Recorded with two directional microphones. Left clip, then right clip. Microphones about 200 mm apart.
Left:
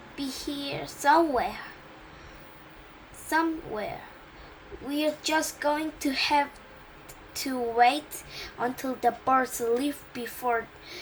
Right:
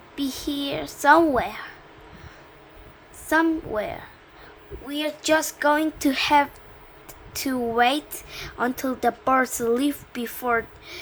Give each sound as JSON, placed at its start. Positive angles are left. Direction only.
{"t": 0.2, "sound": "a woman's voice", "side_deg": -45}
{"t": 3.2, "sound": "a woman's voice", "side_deg": -45}